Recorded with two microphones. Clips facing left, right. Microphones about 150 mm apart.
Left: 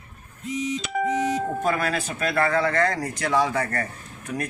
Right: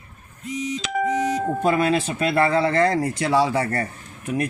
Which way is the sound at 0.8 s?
90° right.